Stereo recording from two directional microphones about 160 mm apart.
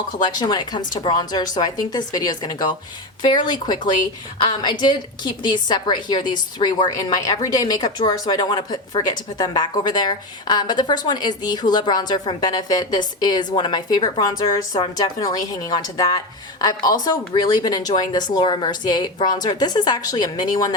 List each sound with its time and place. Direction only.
0.2 s a woman's voice: 30° left (ahead or behind)